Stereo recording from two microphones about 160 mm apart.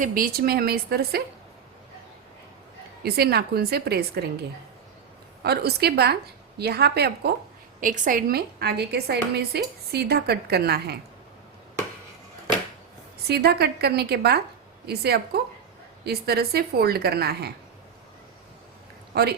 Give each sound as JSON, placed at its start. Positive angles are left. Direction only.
{"t": 0.0, "sound": "a woman's voice", "side_deg": -60}
{"t": 3.0, "sound": "speech", "side_deg": -75}
{"t": 5.4, "sound": "speech", "side_deg": -90}
{"t": 7.8, "sound": "speech", "side_deg": -55}
{"t": 13.1, "sound": "speech", "side_deg": -85}
{"t": 19.1, "sound": "speech", "side_deg": -90}